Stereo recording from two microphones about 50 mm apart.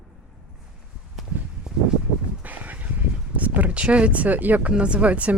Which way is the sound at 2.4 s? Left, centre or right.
Right.